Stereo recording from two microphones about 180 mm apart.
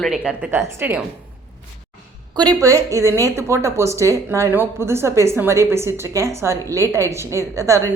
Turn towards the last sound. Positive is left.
turn(degrees=-15)  # may be behind; listen again after turning